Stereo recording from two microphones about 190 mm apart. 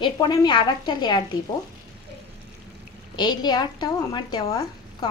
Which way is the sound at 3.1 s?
20° left (ahead or behind).